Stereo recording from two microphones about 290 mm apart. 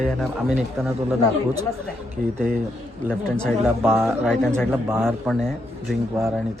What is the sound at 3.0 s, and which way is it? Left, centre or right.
A man's voice, centre.